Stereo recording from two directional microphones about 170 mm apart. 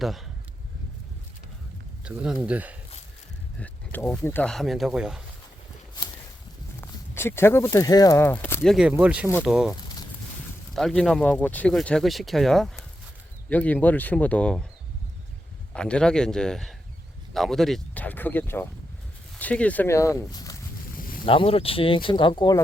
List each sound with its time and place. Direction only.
0.0 s speech: centre (ahead or behind)
2.0 s speech: 5° right (ahead or behind)
3.6 s speech: 10° left (ahead or behind)
6.8 s speech: 15° left (ahead or behind)
8.6 s speech: 5° right (ahead or behind)
10.8 s speech: centre (ahead or behind)
15.7 s speech: 5° left (ahead or behind)
21.2 s speech: 30° left (ahead or behind)